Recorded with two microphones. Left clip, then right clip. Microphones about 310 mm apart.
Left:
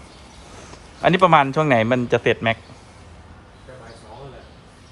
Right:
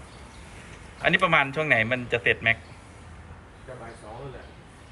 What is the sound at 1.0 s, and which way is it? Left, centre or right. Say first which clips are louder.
Speech: left 7 dB; centre.